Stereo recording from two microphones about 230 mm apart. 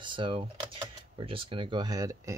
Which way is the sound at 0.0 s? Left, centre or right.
Right.